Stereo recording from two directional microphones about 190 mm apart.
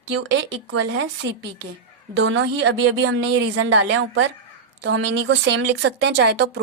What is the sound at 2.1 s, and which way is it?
A woman's voice, 75° right (ahead or behind).